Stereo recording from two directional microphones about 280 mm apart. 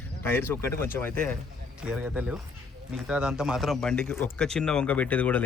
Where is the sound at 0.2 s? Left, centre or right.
Centre.